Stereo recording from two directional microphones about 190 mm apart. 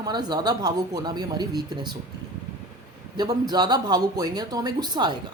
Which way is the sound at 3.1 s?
20° right (ahead or behind).